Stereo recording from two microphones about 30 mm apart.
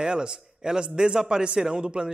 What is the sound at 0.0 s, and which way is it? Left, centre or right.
Speech, right.